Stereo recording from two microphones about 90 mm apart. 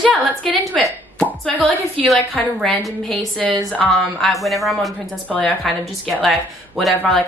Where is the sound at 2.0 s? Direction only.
Centre (ahead or behind).